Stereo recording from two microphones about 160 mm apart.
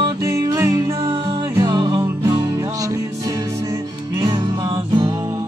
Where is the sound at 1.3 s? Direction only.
30° right (ahead or behind).